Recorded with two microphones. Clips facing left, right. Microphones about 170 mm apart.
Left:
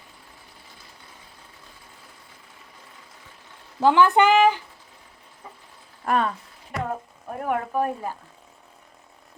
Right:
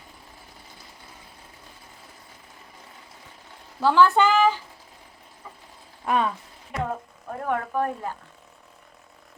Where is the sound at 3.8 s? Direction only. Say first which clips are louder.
Left 1 dB; 15° left (ahead or behind).